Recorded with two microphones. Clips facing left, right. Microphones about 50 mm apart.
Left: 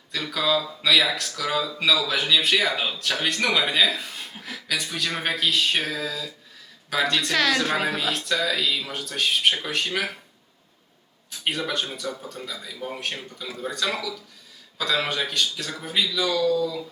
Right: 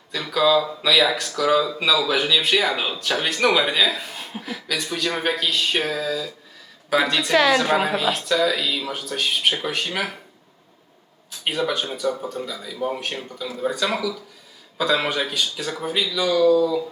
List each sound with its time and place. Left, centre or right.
0.1 s speech: centre
11.4 s speech: centre
16.4 s speech: right